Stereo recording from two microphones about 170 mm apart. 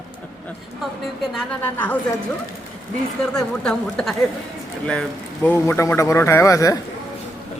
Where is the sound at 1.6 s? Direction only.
10° left (ahead or behind).